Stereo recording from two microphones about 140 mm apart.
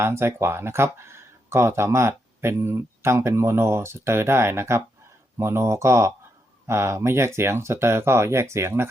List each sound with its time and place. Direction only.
0.0 s speech: 20° right (ahead or behind)